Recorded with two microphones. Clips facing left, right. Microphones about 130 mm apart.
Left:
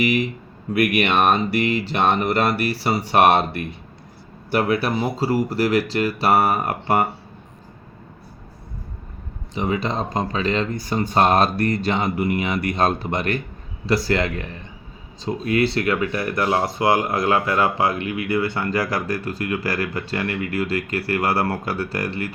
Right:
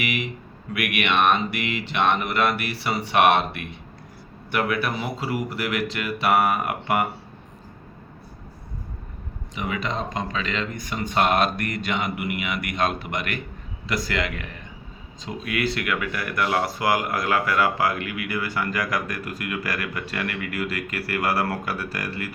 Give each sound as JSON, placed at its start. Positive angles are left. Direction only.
{"t": 0.0, "sound": "speech", "side_deg": 35}
{"t": 9.6, "sound": "speech", "side_deg": 30}